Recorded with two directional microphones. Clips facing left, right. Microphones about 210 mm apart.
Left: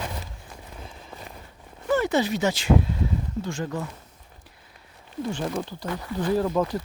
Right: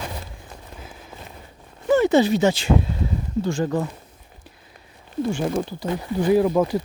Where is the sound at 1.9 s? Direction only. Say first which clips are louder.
Right 6 dB; 25° right (ahead or behind).